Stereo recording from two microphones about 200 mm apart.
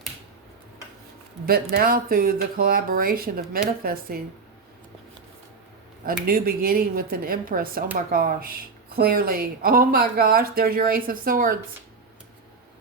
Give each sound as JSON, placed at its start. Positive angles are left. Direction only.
{"t": 1.7, "sound": "speech", "side_deg": -45}
{"t": 6.2, "sound": "speech", "side_deg": -45}